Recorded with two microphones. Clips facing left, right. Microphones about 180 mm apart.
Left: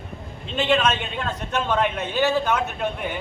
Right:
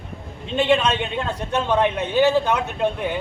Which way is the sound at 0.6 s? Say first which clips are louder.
Right 2 dB; 25° right (ahead or behind).